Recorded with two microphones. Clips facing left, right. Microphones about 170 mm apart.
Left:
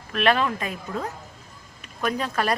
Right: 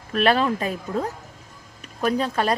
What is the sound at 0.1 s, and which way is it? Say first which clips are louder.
A woman's voice: right 2 dB; 35° right (ahead or behind).